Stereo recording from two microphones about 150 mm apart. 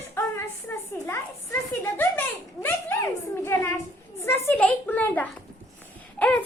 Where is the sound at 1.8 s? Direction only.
15° left (ahead or behind).